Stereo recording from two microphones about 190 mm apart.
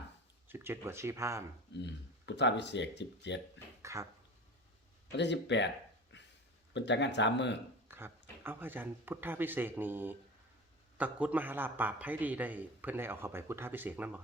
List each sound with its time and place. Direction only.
0.4 s a man's voice: 10° right (ahead or behind)
1.7 s speech: 65° left (ahead or behind)
3.9 s a man's voice: 15° right (ahead or behind)
5.1 s speech: 65° left (ahead or behind)
7.9 s a man's voice: 10° right (ahead or behind)